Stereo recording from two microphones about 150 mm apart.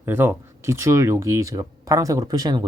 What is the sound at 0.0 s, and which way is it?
Speech, 15° right (ahead or behind).